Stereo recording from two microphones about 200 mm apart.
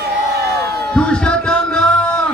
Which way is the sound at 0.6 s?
55° right (ahead or behind).